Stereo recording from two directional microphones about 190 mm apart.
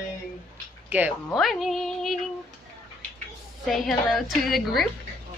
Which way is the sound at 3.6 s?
Centre (ahead or behind).